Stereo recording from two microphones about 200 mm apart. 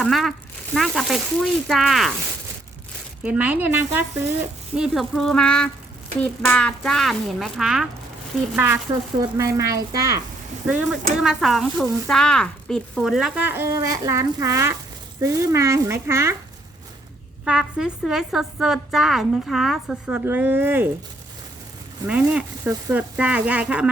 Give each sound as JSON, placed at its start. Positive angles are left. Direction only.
{"t": 0.0, "sound": "a woman's voice", "side_deg": 0}
{"t": 3.2, "sound": "speech", "side_deg": -5}
{"t": 4.8, "sound": "a woman's voice", "side_deg": 0}
{"t": 10.7, "sound": "a woman's voice", "side_deg": -5}
{"t": 17.4, "sound": "a woman's voice", "side_deg": -5}
{"t": 22.0, "sound": "speech", "side_deg": -5}